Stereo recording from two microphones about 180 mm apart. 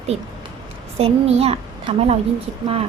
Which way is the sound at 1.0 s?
35° right (ahead or behind).